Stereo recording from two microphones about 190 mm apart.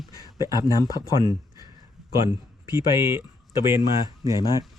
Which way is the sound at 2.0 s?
Centre (ahead or behind).